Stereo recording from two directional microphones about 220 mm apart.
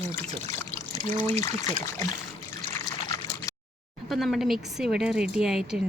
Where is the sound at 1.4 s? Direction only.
15° left (ahead or behind).